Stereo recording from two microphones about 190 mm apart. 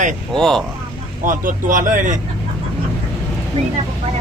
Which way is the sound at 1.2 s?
45° right (ahead or behind).